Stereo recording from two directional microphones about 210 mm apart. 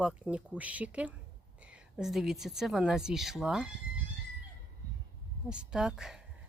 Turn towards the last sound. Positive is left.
turn(degrees=-5)  # may be behind; listen again after turning